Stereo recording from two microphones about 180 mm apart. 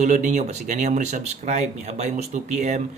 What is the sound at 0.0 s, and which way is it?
Speech, 45° right (ahead or behind).